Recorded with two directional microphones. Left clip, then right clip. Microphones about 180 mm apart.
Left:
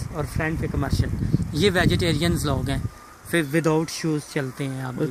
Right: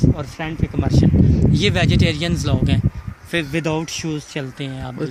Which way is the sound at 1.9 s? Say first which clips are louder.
Right 3 dB; 90° right.